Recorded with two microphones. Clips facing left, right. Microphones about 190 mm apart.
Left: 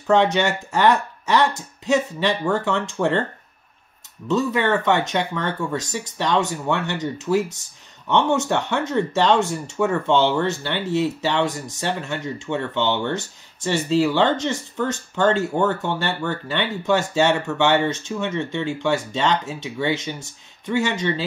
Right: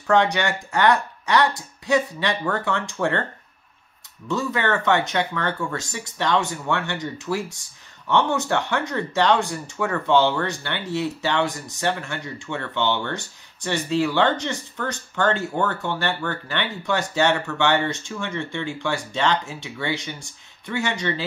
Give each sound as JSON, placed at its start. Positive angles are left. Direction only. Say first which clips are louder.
{"t": 0.0, "sound": "speech", "louder": "left 2 dB", "side_deg": 20}
{"t": 4.3, "sound": "speech", "louder": "left 4 dB", "side_deg": 20}